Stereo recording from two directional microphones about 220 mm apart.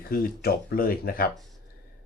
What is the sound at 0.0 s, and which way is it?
Speech, 40° left (ahead or behind).